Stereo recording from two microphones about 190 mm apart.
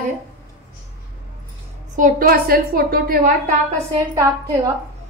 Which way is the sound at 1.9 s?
45° right (ahead or behind).